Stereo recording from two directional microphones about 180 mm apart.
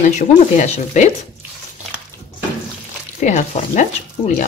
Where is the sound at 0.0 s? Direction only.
45° left (ahead or behind).